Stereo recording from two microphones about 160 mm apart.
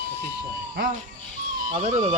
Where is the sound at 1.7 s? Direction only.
45° right (ahead or behind).